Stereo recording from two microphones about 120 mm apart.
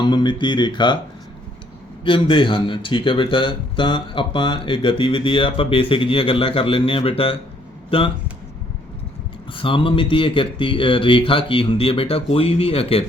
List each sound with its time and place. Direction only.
0.0 s speech: 40° left (ahead or behind)
2.0 s speech: 45° left (ahead or behind)
9.5 s speech: 45° left (ahead or behind)